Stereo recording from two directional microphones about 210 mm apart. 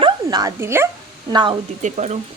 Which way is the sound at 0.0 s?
20° right (ahead or behind).